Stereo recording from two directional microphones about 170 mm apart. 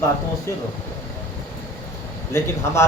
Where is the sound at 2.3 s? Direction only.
15° left (ahead or behind).